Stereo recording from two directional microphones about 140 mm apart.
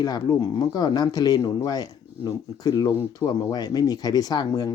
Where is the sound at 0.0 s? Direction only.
30° left (ahead or behind).